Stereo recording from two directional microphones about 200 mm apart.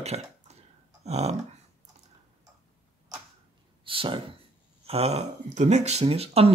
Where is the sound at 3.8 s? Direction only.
25° right (ahead or behind).